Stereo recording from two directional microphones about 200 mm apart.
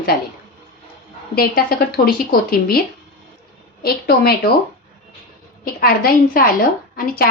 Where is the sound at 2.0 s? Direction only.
50° left (ahead or behind).